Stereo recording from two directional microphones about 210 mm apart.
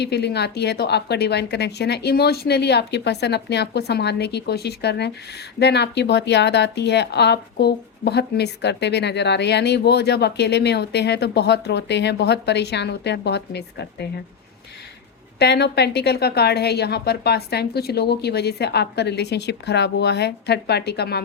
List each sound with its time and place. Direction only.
0.0 s speech: 50° left (ahead or behind)
15.4 s speech: 50° left (ahead or behind)